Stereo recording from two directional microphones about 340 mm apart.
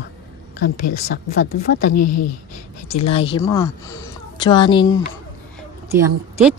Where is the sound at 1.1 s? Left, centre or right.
Left.